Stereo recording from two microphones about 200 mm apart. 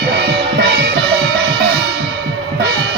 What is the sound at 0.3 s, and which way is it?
Music, 55° right (ahead or behind).